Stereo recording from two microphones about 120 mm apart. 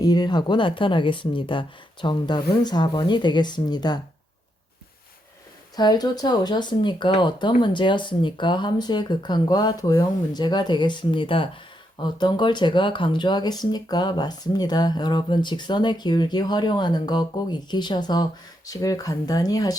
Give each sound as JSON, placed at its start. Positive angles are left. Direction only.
{"t": 0.0, "sound": "speech", "side_deg": 35}
{"t": 5.7, "sound": "speech", "side_deg": 35}